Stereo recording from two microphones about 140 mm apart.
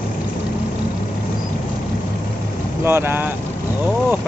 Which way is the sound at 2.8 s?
15° right (ahead or behind).